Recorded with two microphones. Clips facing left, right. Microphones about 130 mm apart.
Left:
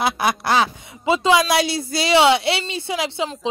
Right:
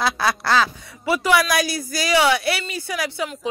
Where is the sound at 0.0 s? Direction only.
20° left (ahead or behind).